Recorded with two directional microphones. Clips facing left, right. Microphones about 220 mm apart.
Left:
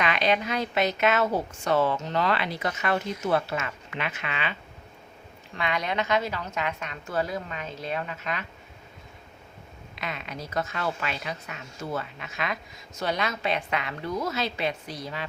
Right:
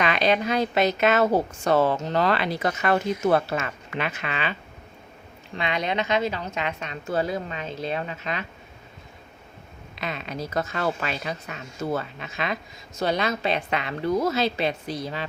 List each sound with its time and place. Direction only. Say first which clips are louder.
0.0 s a woman's voice: right 3 dB; 35° right (ahead or behind)
5.5 s a woman's voice: right 2 dB; 25° right (ahead or behind)
10.0 s a woman's voice: right 4 dB; 35° right (ahead or behind)